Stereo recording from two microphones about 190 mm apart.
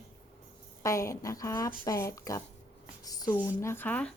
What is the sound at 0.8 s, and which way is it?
A woman's voice, 15° left (ahead or behind).